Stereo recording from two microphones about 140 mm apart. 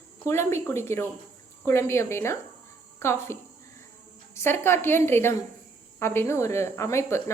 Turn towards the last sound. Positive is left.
turn(degrees=20)  # may be behind; listen again after turning